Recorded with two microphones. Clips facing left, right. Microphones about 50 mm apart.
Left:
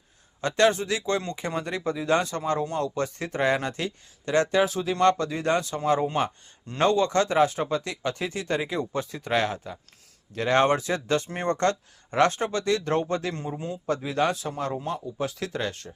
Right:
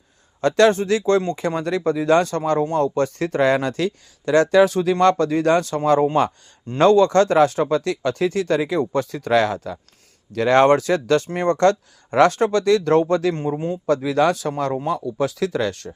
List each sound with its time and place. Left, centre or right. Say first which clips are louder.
0.4 s speech: right 6 dB; right
0.7 s speech: right 8 dB; right
2.6 s speech: right 8 dB; right
11.3 s speech: right 9 dB; right
12.2 s speech: right 7 dB; right
13.3 s a man's voice: right 9 dB; right
13.8 s speech: right 7 dB; right